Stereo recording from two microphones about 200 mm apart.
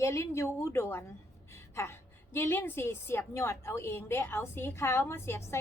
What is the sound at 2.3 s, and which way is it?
A woman's voice, 10° left (ahead or behind).